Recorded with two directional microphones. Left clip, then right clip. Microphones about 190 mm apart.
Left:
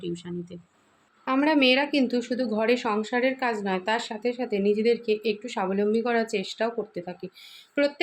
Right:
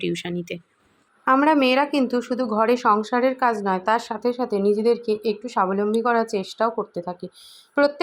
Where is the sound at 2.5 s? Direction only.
15° right (ahead or behind).